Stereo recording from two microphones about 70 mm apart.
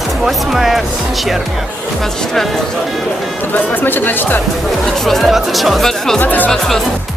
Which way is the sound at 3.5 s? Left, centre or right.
Left.